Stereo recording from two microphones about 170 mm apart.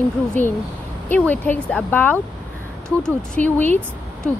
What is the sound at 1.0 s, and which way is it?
Speech, 10° left (ahead or behind).